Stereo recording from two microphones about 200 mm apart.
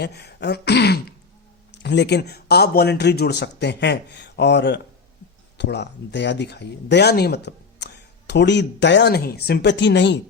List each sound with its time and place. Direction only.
0.0 s speech: 55° left (ahead or behind)